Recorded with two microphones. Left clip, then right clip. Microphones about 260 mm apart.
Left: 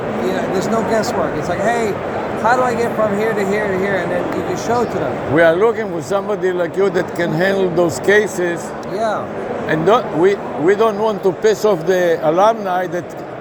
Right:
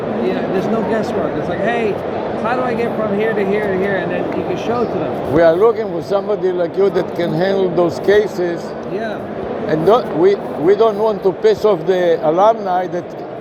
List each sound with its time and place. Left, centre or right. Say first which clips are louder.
1.5 s a man's voice: left 1 dB; left
5.4 s a man's voice: right 1 dB; left
9.8 s a man's voice: right 1 dB; left